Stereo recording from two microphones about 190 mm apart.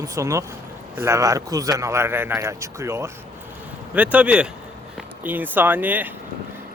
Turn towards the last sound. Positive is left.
turn(degrees=-10)  # may be behind; listen again after turning